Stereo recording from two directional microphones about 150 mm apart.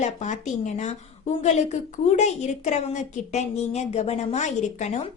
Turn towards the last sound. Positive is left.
turn(degrees=50)  # may be behind; listen again after turning